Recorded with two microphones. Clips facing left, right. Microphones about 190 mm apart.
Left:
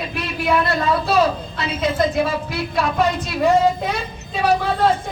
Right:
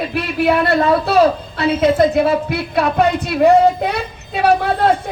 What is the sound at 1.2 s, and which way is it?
A woman's voice, 60° right (ahead or behind).